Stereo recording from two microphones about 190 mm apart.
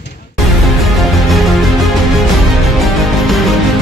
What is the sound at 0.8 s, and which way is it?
Music, centre (ahead or behind).